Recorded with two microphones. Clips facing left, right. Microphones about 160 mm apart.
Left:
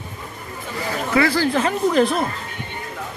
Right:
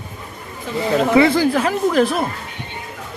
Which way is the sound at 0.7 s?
25° right (ahead or behind).